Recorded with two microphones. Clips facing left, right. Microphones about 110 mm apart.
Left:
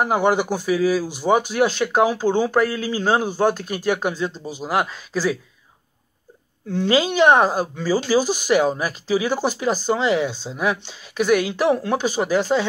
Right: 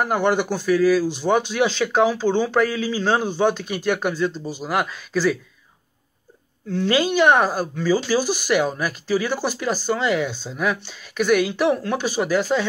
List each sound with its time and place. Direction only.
0.0 s speech: 10° left (ahead or behind)
6.7 s speech: 20° left (ahead or behind)